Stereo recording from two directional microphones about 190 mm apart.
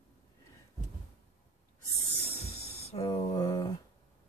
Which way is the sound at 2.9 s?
25° left (ahead or behind).